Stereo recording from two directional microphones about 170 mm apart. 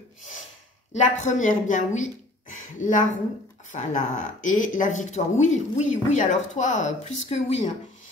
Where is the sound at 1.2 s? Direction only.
45° left (ahead or behind).